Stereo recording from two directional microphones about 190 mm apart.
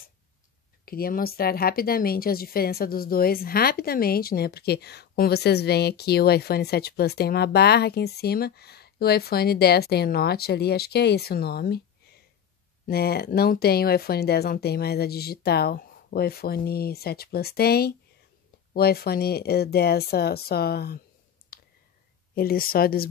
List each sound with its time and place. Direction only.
0.8 s speech: 50° left (ahead or behind)
12.8 s speech: 55° left (ahead or behind)
21.5 s clicking: 55° left (ahead or behind)
22.3 s speech: 50° left (ahead or behind)